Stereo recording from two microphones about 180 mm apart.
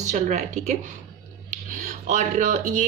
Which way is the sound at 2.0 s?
45° right (ahead or behind).